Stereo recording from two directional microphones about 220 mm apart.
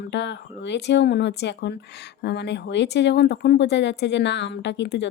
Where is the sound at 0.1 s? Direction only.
55° left (ahead or behind).